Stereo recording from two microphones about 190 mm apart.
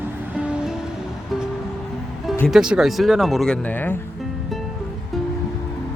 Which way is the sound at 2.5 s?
5° right (ahead or behind).